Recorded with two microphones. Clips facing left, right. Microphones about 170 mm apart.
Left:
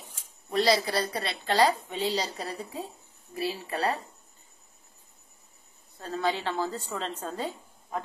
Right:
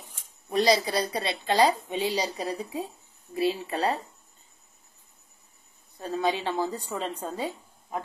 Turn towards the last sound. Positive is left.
turn(degrees=-10)  # may be behind; listen again after turning